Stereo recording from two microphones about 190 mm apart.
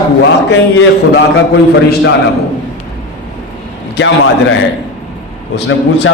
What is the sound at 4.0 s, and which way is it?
Speech, 65° left (ahead or behind).